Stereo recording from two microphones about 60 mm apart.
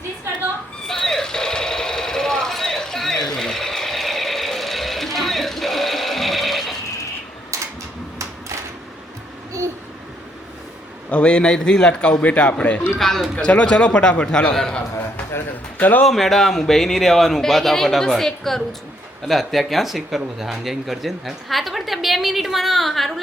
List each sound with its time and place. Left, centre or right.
0.9 s a sound: centre
11.1 s a man's voice: centre
13.0 s a man's voice: centre
13.3 s a man's voice: left
15.8 s speech: left
16.0 s speech: centre